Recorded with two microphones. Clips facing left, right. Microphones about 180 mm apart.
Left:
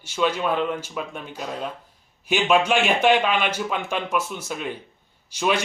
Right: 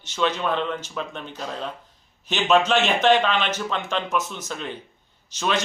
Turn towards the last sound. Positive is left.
turn(degrees=10)  # may be behind; listen again after turning